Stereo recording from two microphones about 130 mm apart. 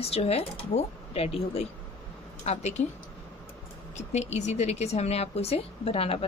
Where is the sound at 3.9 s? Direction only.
60° left (ahead or behind).